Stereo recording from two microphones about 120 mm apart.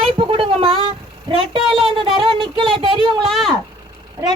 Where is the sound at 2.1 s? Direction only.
45° right (ahead or behind).